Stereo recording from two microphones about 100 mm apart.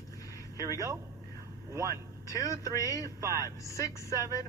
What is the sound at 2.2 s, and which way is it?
Speech, 35° left (ahead or behind).